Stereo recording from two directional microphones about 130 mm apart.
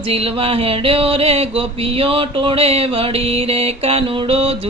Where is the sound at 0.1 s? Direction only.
50° right (ahead or behind).